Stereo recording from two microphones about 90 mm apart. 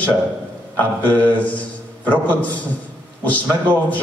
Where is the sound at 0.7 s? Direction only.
20° left (ahead or behind).